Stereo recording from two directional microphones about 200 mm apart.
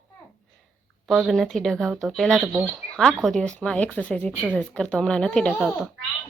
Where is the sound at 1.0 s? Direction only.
Centre (ahead or behind).